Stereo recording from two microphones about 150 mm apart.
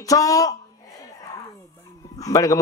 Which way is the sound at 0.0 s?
25° left (ahead or behind).